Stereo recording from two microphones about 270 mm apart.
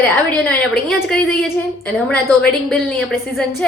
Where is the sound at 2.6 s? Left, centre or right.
Centre.